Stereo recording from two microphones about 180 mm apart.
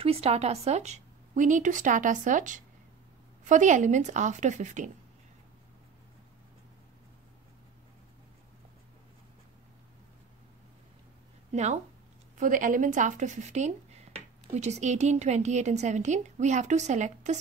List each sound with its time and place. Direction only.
0.0 s speech: 35° right (ahead or behind)
11.5 s speech: 40° right (ahead or behind)